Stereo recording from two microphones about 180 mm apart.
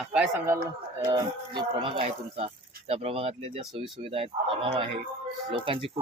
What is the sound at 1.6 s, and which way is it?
Speech, 25° right (ahead or behind).